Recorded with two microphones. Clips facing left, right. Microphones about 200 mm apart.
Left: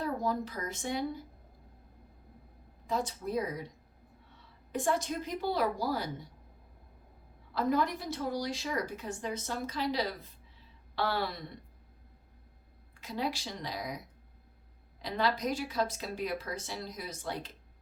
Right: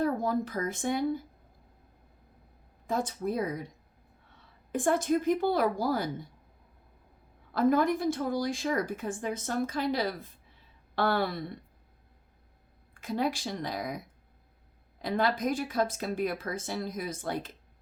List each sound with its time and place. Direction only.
0.0 s a woman's voice: 50° right (ahead or behind)
2.8 s a woman's voice: 50° right (ahead or behind)
4.7 s a woman's voice: 50° right (ahead or behind)
7.5 s a woman's voice: 50° right (ahead or behind)
12.9 s a woman's voice: 50° right (ahead or behind)
15.0 s a woman's voice: 50° right (ahead or behind)